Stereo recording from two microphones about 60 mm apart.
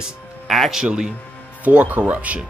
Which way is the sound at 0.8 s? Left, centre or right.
Centre.